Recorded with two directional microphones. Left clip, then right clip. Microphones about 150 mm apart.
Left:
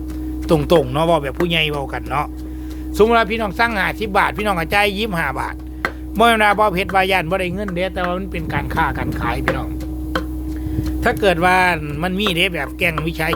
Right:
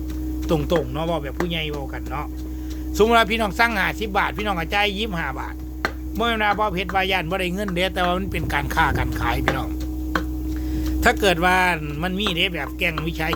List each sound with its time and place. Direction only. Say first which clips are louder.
0.4 s speech: left 6 dB; 30° left (ahead or behind)
0.7 s speech: left 8 dB; 45° left (ahead or behind)
3.0 s speech: left 2 dB; 10° left (ahead or behind)
3.7 s speech: left 3 dB; 20° left (ahead or behind)
11.2 s speech: left 7 dB; 15° left (ahead or behind)